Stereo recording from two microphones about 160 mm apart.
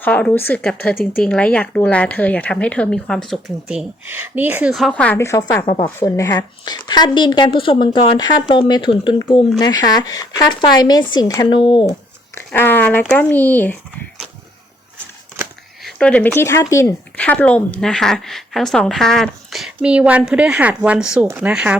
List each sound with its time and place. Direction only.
0.0 s a woman's voice: 10° left (ahead or behind); by 11.9 s 30° left (ahead or behind)
12.5 s a woman's voice: 10° left (ahead or behind)
15.8 s speech: 5° left (ahead or behind)